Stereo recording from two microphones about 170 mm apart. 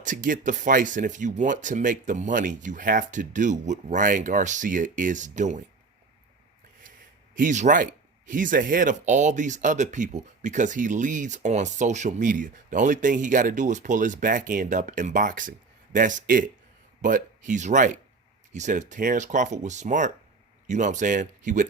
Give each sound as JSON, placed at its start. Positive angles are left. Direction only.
{"t": 0.0, "sound": "speech", "side_deg": -50}
{"t": 7.3, "sound": "speech", "side_deg": -45}